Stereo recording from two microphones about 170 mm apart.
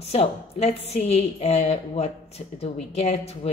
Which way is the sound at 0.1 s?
40° left (ahead or behind).